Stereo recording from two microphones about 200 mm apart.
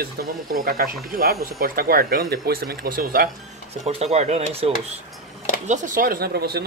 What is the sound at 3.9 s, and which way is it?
Speech, 30° right (ahead or behind).